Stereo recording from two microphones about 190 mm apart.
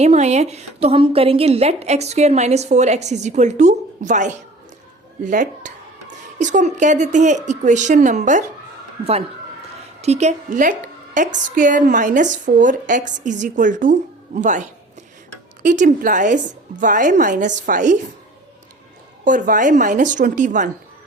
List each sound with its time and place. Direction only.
0.0 s a woman's voice: 35° right (ahead or behind)
10.0 s a woman's voice: 35° right (ahead or behind)
19.2 s a woman's voice: 45° right (ahead or behind)